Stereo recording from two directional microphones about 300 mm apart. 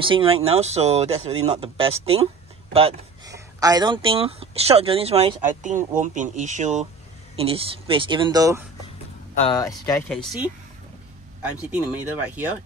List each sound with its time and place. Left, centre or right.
0.0 s speech: centre
9.3 s speech: centre
11.7 s speech: centre